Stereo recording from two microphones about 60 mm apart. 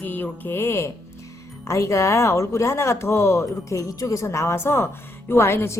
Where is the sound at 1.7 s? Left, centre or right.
Left.